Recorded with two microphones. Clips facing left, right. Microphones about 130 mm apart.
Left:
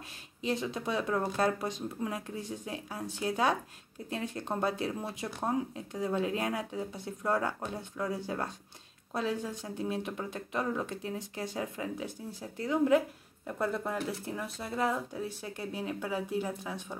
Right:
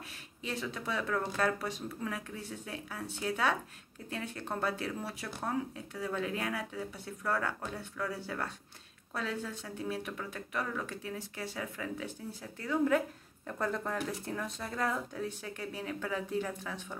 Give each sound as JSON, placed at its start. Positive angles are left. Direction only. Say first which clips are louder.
{"t": 0.4, "sound": "speech", "louder": "left 5 dB", "side_deg": 20}